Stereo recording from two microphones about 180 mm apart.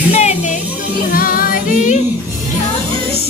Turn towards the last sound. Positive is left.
turn(degrees=45)  # may be behind; listen again after turning